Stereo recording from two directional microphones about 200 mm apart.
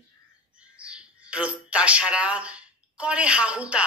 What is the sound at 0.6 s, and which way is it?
Speech, 5° right (ahead or behind).